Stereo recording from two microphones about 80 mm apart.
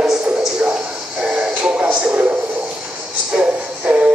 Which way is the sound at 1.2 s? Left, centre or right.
Centre.